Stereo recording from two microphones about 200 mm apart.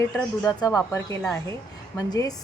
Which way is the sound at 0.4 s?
15° left (ahead or behind).